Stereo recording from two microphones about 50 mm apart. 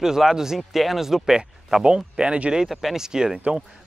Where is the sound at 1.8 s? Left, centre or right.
Centre.